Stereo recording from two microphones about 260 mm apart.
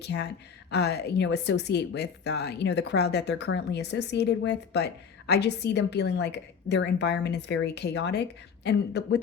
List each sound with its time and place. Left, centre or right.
0.0 s a woman's voice: left